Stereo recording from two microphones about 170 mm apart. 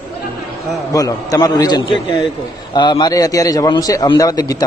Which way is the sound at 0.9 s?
20° left (ahead or behind).